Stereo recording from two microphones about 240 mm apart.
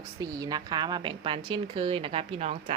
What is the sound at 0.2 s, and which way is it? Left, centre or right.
Speech, centre.